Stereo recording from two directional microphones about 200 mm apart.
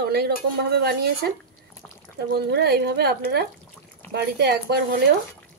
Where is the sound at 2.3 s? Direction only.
55° right (ahead or behind).